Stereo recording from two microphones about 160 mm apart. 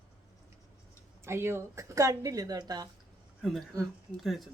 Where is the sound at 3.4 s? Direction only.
Centre (ahead or behind).